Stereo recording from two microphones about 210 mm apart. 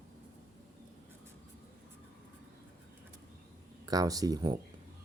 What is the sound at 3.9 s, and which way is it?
Speech, 15° right (ahead or behind).